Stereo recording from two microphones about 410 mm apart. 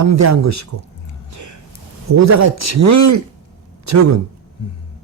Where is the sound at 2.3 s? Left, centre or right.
Right.